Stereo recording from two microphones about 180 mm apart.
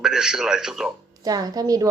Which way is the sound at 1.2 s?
20° right (ahead or behind).